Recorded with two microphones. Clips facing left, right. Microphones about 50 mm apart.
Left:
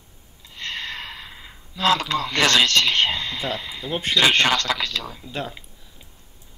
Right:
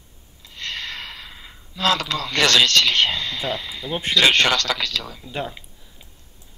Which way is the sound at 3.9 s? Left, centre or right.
Centre.